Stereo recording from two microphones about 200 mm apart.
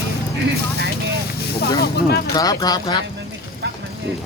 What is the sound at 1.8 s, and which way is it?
Speech, 50° left (ahead or behind).